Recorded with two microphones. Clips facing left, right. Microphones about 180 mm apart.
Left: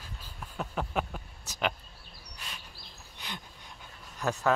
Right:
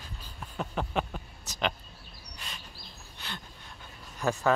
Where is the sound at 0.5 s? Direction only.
5° left (ahead or behind).